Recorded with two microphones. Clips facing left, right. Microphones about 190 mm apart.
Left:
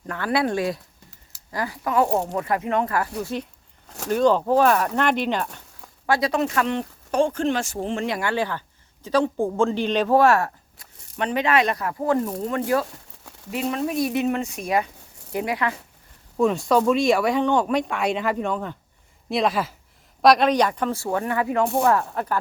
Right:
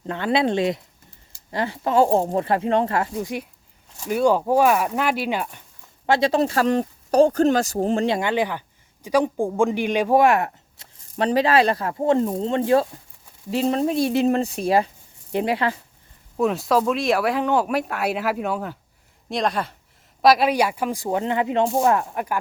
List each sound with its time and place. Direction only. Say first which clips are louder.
0.1 s speech: right 2 dB; 25° right (ahead or behind)
3.2 s speech: right 1 dB; 15° right (ahead or behind)
3.8 s a sound: left 3 dB; 70° left (ahead or behind)
4.1 s speech: even; 10° right (ahead or behind)
6.1 s speech: right 3 dB; 25° right (ahead or behind)
11.2 s speech: right 3 dB; 35° right (ahead or behind)
13.1 s a sound: left 1 dB; 80° left
13.5 s speech: right 4 dB; 30° right (ahead or behind)
16.4 s speech: left 1 dB; centre (ahead or behind)